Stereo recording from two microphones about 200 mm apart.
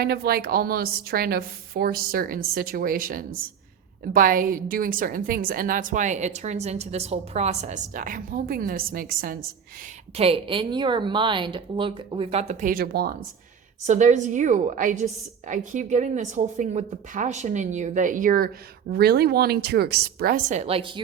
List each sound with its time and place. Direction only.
0.0 s a woman's voice: 50° right (ahead or behind)
10.2 s a woman's voice: 30° right (ahead or behind); by 13.1 s 50° right (ahead or behind)
13.8 s a woman's voice: 35° right (ahead or behind)